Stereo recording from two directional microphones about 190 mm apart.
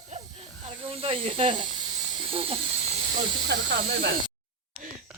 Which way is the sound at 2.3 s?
30° right (ahead or behind).